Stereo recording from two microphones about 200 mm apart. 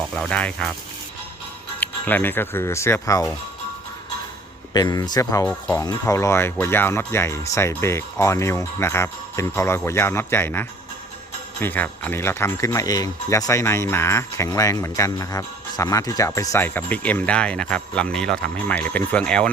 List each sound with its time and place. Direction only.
0.1 s speech: 5° left (ahead or behind)
1.8 s speech: 10° left (ahead or behind)
4.7 s speech: 20° left (ahead or behind)